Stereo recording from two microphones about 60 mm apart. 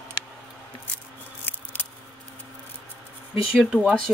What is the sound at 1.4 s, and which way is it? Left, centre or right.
Scissors, left.